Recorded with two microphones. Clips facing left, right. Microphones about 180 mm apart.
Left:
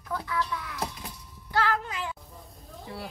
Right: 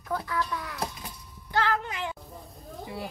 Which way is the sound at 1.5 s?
25° right (ahead or behind).